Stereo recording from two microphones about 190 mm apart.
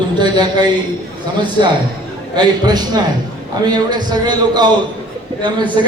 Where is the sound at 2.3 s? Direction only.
20° right (ahead or behind).